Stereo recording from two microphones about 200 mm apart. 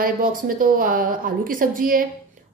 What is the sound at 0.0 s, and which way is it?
A woman's voice, 45° right (ahead or behind).